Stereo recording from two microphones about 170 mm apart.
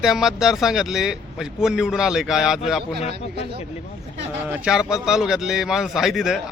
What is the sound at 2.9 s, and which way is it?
Speech, 35° left (ahead or behind).